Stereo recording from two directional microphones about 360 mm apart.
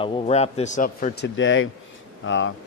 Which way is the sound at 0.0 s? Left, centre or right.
Centre.